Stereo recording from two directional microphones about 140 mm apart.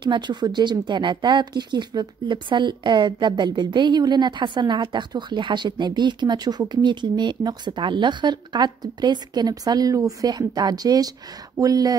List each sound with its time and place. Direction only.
0.0 s speech: 35° right (ahead or behind)